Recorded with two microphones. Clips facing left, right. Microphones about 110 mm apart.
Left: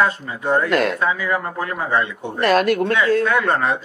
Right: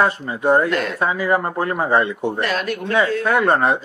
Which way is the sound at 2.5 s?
50° left (ahead or behind).